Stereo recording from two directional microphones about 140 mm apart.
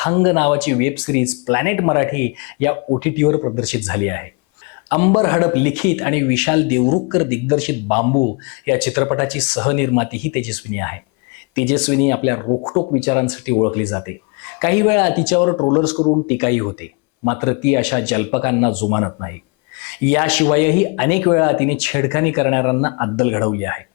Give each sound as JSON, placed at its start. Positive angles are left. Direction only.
{"t": 0.0, "sound": "speech", "side_deg": 20}
{"t": 12.5, "sound": "speech", "side_deg": 30}
{"t": 13.0, "sound": "speech", "side_deg": 15}
{"t": 16.3, "sound": "speech", "side_deg": 15}